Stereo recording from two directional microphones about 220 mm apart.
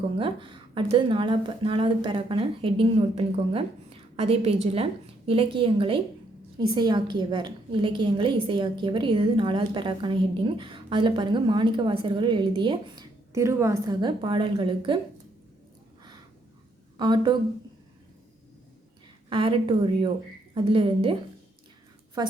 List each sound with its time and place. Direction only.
0.2 s a woman's voice: 25° right (ahead or behind)
17.0 s a woman's voice: 20° right (ahead or behind)
19.3 s a woman's voice: 25° right (ahead or behind)
22.2 s a woman's voice: 20° right (ahead or behind)